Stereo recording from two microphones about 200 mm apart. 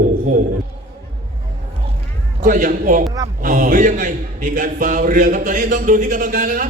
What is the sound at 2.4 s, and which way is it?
A man's voice, 40° right (ahead or behind).